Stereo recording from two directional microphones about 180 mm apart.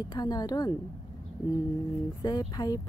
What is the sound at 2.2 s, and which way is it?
Speech, 25° left (ahead or behind).